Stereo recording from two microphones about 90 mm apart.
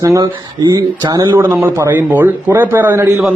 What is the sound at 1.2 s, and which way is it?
Speech, 25° right (ahead or behind).